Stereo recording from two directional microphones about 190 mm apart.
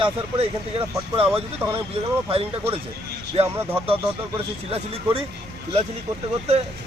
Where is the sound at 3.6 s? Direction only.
10° right (ahead or behind).